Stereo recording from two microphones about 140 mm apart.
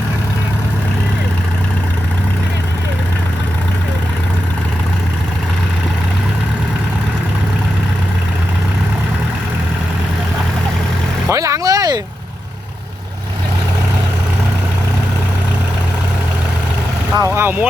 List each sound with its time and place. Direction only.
11.3 s vehicle: 20° right (ahead or behind)
17.2 s vehicle: 20° right (ahead or behind)